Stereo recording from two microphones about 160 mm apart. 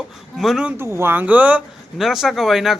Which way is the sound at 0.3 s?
Centre (ahead or behind).